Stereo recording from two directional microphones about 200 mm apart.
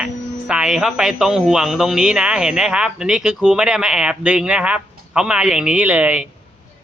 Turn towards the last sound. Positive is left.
turn(degrees=-5)  # may be behind; listen again after turning